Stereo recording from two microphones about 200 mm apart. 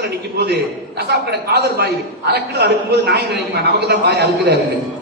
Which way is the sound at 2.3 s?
55° right (ahead or behind).